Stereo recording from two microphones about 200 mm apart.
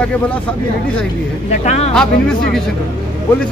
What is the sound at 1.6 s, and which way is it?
Speech, 30° left (ahead or behind).